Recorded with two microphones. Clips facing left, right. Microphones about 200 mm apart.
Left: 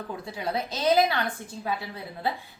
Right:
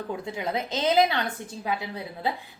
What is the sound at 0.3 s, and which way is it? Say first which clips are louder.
Speech: left 1 dB; 20° right (ahead or behind).